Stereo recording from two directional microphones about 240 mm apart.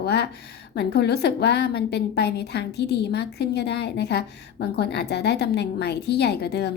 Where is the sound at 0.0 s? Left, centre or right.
Left.